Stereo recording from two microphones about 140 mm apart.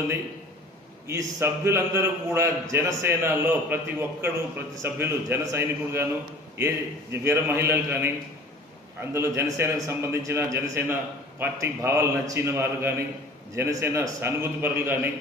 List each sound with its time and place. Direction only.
1.0 s a man's voice: 20° right (ahead or behind)
9.1 s a man's voice: 20° right (ahead or behind)